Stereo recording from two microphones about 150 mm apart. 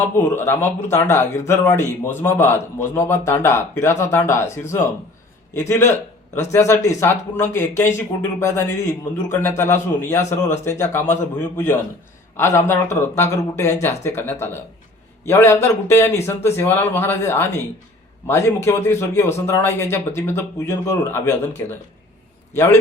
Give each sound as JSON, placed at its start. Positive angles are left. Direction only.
{"t": 0.3, "sound": "speech", "side_deg": 15}
{"t": 6.3, "sound": "speech", "side_deg": 20}